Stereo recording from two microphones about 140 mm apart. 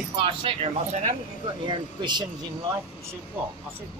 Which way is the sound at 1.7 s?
35° right (ahead or behind).